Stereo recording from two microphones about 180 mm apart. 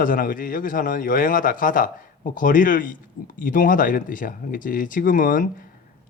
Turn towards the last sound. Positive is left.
turn(degrees=50)  # may be behind; listen again after turning